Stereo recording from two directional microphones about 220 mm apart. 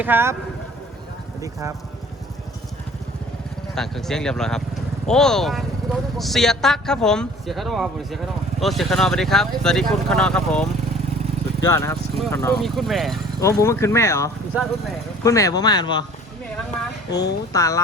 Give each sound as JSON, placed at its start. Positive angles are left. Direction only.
{"t": 0.0, "sound": "speech", "side_deg": -10}
{"t": 1.4, "sound": "speech", "side_deg": -15}
{"t": 3.8, "sound": "speech", "side_deg": 0}
{"t": 11.7, "sound": "speech", "side_deg": 10}
{"t": 12.6, "sound": "speech", "side_deg": 0}
{"t": 13.4, "sound": "speech", "side_deg": 15}
{"t": 14.5, "sound": "speech", "side_deg": 0}
{"t": 15.2, "sound": "speech", "side_deg": 15}
{"t": 17.1, "sound": "speech", "side_deg": 50}
{"t": 17.5, "sound": "speech", "side_deg": 15}